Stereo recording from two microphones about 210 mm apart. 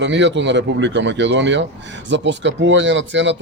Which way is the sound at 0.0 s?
60° right (ahead or behind).